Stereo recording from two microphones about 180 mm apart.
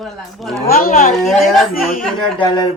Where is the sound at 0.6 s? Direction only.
55° left (ahead or behind).